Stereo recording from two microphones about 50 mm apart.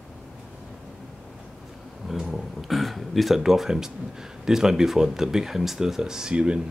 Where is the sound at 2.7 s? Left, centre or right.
Centre.